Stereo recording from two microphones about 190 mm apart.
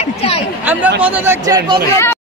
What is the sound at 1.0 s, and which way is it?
Speech, 10° right (ahead or behind).